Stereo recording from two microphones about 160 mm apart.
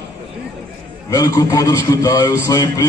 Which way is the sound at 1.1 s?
20° left (ahead or behind).